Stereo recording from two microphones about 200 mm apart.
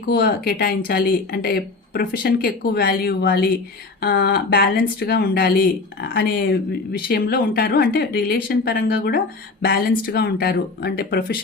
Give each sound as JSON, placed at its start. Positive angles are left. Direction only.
{"t": 0.0, "sound": "speech", "side_deg": 50}